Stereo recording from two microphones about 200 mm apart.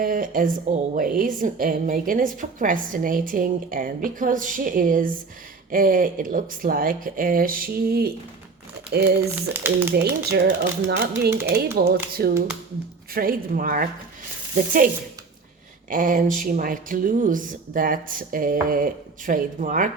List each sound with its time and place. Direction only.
0.0 s a woman's voice: 40° right (ahead or behind)
9.5 s speech: 10° right (ahead or behind)
9.9 s a woman's voice: 50° right (ahead or behind)
11.8 s a woman's voice: 50° right (ahead or behind)
15.9 s a woman's voice: 40° right (ahead or behind)